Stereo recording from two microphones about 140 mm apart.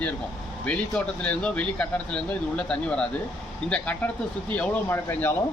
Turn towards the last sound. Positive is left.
turn(degrees=15)  # may be behind; listen again after turning